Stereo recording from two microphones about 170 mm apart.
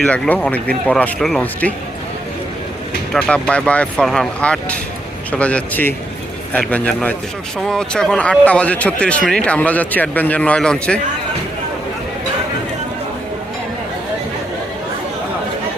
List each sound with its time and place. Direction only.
0.0 s a man's voice: 5° left (ahead or behind)
3.1 s a man's voice: 5° left (ahead or behind)